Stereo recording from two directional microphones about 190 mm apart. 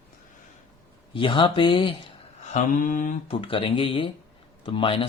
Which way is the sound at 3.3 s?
30° left (ahead or behind).